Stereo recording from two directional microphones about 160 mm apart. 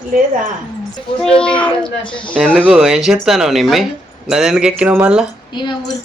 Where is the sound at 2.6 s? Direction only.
5° right (ahead or behind).